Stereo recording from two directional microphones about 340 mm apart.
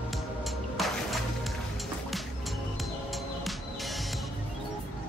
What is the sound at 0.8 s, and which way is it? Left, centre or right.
Music, centre.